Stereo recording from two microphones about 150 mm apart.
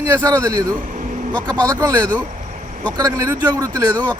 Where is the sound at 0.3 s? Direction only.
20° right (ahead or behind).